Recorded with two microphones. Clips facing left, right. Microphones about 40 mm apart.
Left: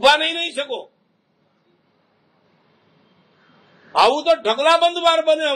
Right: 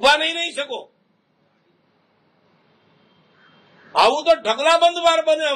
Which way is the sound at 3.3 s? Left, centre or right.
Right.